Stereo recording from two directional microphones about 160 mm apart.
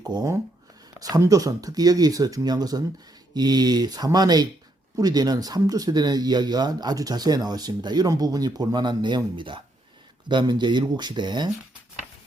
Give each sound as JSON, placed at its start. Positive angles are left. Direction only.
{"t": 0.0, "sound": "speech", "side_deg": -25}